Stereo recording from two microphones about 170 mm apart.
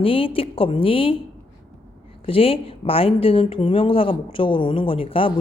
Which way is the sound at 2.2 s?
35° left (ahead or behind).